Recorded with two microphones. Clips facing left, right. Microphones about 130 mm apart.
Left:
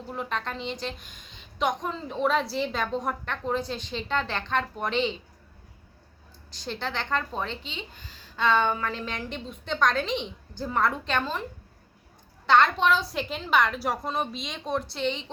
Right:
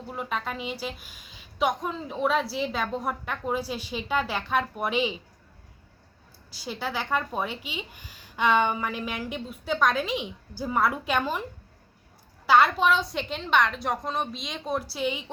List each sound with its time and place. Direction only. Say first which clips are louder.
0.1 s a woman's voice: even; 5° right (ahead or behind)
6.5 s speech: right 1 dB; 5° right (ahead or behind)
12.5 s a woman's voice: even; 5° right (ahead or behind)